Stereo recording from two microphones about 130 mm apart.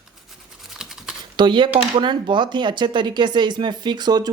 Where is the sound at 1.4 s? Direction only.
40° right (ahead or behind).